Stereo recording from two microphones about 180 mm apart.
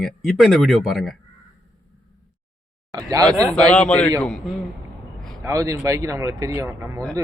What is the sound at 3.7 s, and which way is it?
Speech, 5° left (ahead or behind).